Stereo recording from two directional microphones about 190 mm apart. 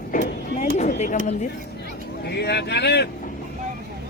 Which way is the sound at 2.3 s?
60° left (ahead or behind).